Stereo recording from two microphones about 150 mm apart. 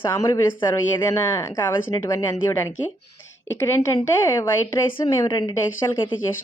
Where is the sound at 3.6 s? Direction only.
20° left (ahead or behind).